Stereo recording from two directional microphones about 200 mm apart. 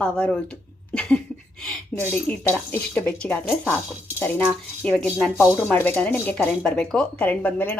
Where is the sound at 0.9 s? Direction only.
5° left (ahead or behind).